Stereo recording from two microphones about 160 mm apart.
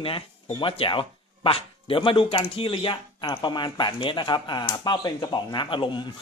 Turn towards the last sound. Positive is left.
turn(degrees=30)  # may be behind; listen again after turning